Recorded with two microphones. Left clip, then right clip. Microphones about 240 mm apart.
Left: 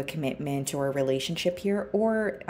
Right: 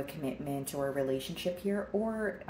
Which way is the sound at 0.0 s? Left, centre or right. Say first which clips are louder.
Left 6 dB; left.